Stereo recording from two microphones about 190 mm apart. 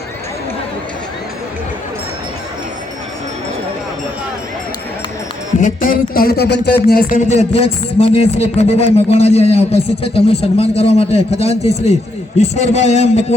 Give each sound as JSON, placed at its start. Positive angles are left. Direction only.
{"t": 5.5, "sound": "speech", "side_deg": 45}